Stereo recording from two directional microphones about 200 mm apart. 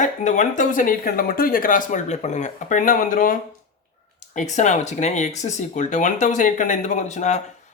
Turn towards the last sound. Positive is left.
turn(degrees=35)  # may be behind; listen again after turning